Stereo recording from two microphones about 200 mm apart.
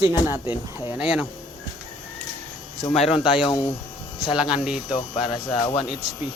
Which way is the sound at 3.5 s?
20° left (ahead or behind).